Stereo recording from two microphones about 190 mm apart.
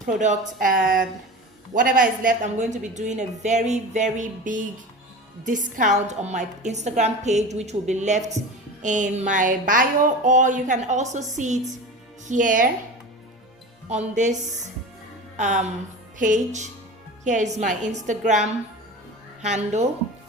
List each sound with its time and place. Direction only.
0.2 s a woman's voice: 45° right (ahead or behind)
13.8 s a woman's voice: 35° right (ahead or behind)